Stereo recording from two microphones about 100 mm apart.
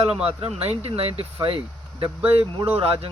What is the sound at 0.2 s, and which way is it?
Speech, 90° right.